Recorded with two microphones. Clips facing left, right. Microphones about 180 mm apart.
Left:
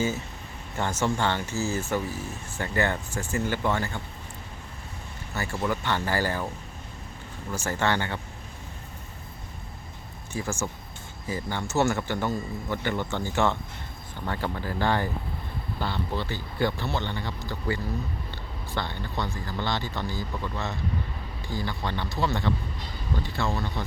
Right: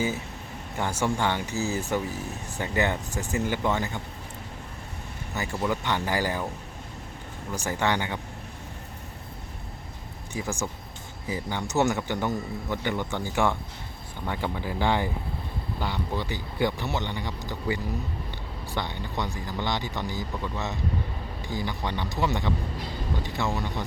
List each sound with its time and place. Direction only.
0.8 s speech: 10° right (ahead or behind)
5.3 s speech: 20° right (ahead or behind)
7.5 s speech: 15° right (ahead or behind)
10.3 s speech: 15° right (ahead or behind)